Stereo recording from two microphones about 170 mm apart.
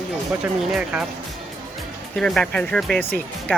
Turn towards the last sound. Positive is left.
turn(degrees=10)  # may be behind; listen again after turning